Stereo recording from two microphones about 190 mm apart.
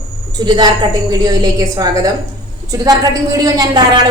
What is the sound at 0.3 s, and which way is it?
Speech, 20° right (ahead or behind).